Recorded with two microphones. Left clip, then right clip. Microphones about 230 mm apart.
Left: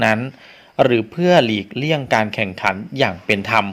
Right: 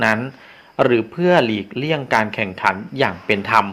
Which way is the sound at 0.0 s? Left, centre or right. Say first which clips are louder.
Left 1 dB; left.